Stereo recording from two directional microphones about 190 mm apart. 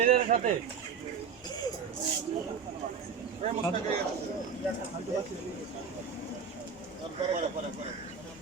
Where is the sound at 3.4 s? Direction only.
30° right (ahead or behind).